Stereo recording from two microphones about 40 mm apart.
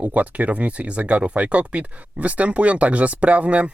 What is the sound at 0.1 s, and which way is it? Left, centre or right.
Speech, right.